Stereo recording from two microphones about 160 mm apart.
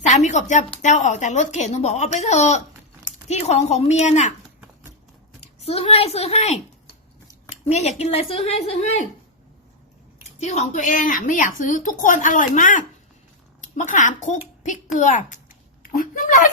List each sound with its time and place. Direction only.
0.1 s a woman's voice: 45° left (ahead or behind)
5.4 s a woman's voice: 40° left (ahead or behind)
10.4 s a woman's voice: 45° left (ahead or behind)
14.9 s a sound: 50° left (ahead or behind)